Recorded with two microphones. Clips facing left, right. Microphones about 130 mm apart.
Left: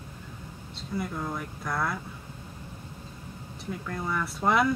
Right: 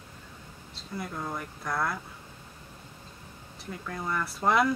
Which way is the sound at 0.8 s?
Centre (ahead or behind).